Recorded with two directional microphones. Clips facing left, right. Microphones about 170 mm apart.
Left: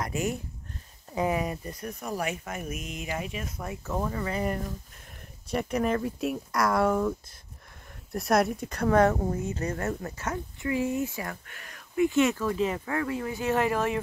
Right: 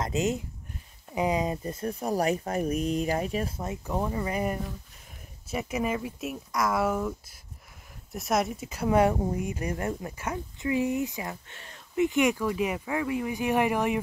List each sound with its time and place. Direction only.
0.0 s speech: 20° right (ahead or behind)